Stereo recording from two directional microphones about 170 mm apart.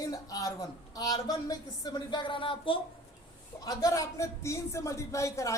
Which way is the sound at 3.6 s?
20° left (ahead or behind).